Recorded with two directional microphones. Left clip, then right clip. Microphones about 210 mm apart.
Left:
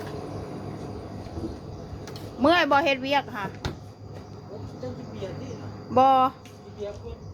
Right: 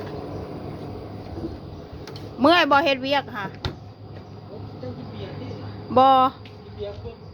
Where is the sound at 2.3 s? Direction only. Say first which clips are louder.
Right 3 dB; 25° right (ahead or behind).